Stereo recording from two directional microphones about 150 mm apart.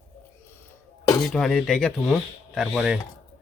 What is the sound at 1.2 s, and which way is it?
Speech, 5° left (ahead or behind).